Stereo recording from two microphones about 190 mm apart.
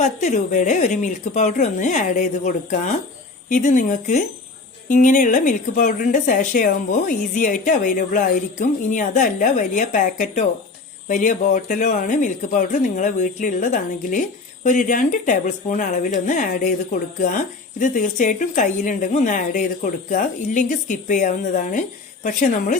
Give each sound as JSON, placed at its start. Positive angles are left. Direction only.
{"t": 0.0, "sound": "speech", "side_deg": 40}